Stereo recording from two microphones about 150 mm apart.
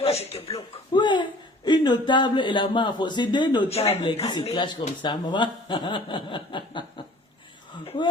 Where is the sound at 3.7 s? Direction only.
40° left (ahead or behind).